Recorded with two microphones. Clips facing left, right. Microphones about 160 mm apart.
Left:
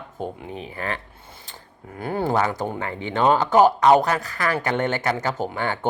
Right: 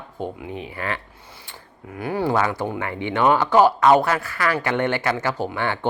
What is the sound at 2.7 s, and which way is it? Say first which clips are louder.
Speech: right 2 dB; 35° left (ahead or behind).